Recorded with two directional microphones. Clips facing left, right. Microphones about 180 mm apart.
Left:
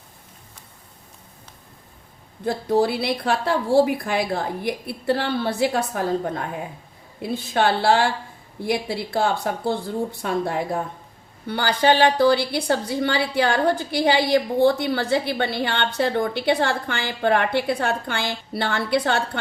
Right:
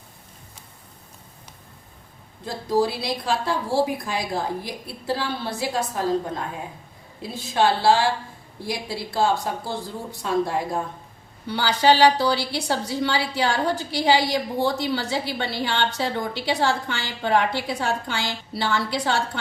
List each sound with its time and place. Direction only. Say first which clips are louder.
2.4 s a woman's voice: left 2 dB; 60° left (ahead or behind)